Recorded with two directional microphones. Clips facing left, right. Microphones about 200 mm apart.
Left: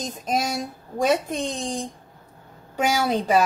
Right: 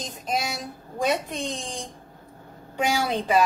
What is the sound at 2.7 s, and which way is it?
Speech, 40° left (ahead or behind).